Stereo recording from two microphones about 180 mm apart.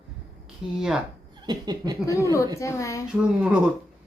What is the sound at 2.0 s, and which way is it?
Speech, 15° left (ahead or behind).